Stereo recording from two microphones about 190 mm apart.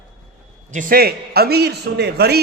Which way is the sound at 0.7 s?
45° right (ahead or behind).